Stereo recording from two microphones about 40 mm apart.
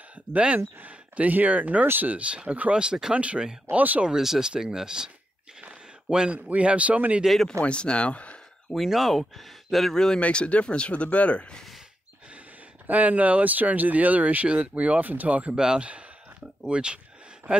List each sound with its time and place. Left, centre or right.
0.3 s speech: right
2.2 s speech: right
2.7 s speech: right
3.2 s speech: right
4.2 s speech: centre
6.0 s speech: right
7.6 s speech: left
8.7 s speech: centre
9.9 s speech: centre
10.2 s speech: left
12.8 s speech: right
15.5 s speech: centre